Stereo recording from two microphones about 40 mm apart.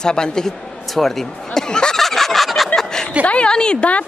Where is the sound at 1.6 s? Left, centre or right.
Centre.